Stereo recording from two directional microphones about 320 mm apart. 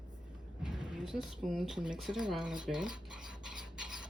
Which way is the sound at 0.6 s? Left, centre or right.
Centre.